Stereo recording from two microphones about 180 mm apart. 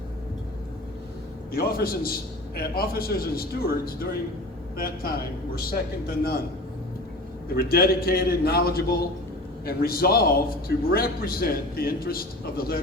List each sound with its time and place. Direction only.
1.5 s a man's voice: 55° left (ahead or behind)
5.5 s a man's voice: 55° left (ahead or behind)
7.5 s a man's voice: 55° left (ahead or behind)